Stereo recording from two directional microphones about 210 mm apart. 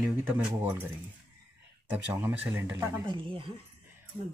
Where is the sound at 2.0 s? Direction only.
10° right (ahead or behind).